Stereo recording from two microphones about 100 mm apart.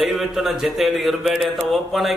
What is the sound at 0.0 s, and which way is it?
A man's voice, centre (ahead or behind).